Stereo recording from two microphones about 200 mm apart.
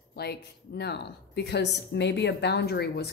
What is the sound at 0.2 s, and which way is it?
Speech, 55° left (ahead or behind).